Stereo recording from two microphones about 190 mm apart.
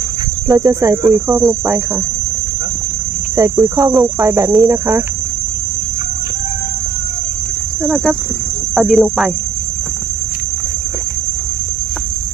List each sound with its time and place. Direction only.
0.4 s speech: 20° right (ahead or behind)
3.3 s speech: 15° right (ahead or behind)
7.9 s cricket: centre (ahead or behind)